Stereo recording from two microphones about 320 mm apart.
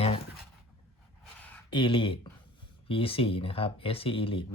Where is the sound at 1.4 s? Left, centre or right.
Centre.